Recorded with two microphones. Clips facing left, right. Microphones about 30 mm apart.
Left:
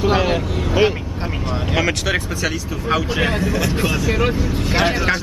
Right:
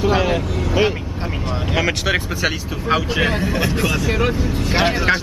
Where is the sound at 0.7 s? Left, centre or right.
Centre.